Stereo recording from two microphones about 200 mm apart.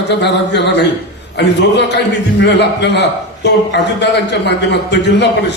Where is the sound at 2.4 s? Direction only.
60° left (ahead or behind).